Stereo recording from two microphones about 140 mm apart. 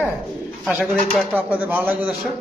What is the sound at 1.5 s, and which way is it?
Speech, 10° right (ahead or behind).